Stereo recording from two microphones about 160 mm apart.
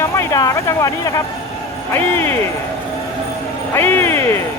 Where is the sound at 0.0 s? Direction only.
20° left (ahead or behind).